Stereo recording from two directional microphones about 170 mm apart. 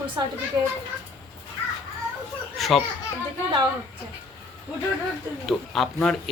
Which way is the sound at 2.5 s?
Centre (ahead or behind).